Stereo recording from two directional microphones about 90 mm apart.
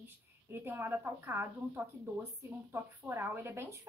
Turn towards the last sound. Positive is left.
turn(degrees=-25)  # may be behind; listen again after turning